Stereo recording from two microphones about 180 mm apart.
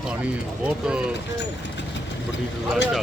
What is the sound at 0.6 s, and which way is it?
Speech, 5° right (ahead or behind).